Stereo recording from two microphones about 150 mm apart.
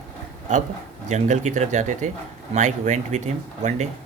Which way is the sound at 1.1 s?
50° right (ahead or behind).